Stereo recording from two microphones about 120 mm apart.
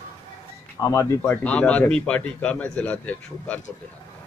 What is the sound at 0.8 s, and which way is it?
Speech, 30° left (ahead or behind).